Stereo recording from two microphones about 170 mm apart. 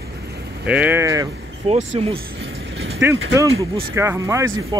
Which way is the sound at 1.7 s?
40° right (ahead or behind).